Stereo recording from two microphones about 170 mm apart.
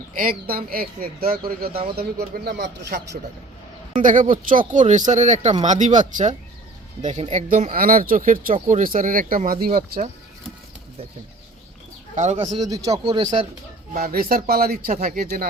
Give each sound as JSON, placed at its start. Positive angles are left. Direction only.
{"t": 0.1, "sound": "speech", "side_deg": -55}
{"t": 3.9, "sound": "speech", "side_deg": -50}
{"t": 7.0, "sound": "speech", "side_deg": -35}
{"t": 7.4, "sound": "speech", "side_deg": -55}
{"t": 12.1, "sound": "speech", "side_deg": -45}
{"t": 12.5, "sound": "a man's voice", "side_deg": -20}
{"t": 12.9, "sound": "speech", "side_deg": -35}
{"t": 14.0, "sound": "speech", "side_deg": -60}